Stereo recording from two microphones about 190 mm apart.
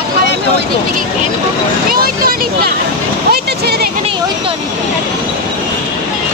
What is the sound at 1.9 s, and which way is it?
Vehicle, 50° right (ahead or behind).